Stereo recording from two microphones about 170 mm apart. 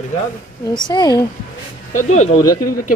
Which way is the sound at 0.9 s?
25° left (ahead or behind).